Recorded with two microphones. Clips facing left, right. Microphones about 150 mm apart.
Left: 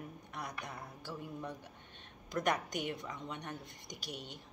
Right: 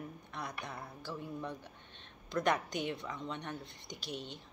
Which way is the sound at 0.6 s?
15° left (ahead or behind).